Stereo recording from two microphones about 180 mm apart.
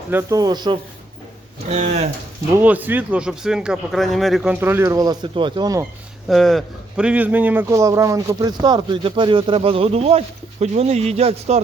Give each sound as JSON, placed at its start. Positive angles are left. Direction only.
{"t": 0.1, "sound": "speech", "side_deg": -15}
{"t": 1.7, "sound": "speech", "side_deg": -40}
{"t": 2.5, "sound": "speech", "side_deg": -10}
{"t": 6.2, "sound": "speech", "side_deg": 0}